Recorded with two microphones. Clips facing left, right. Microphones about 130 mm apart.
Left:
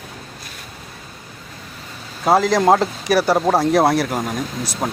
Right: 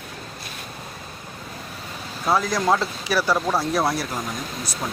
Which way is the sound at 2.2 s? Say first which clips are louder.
Left 7 dB; 70° left (ahead or behind).